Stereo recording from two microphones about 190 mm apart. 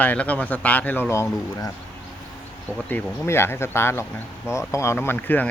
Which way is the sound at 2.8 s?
10° left (ahead or behind).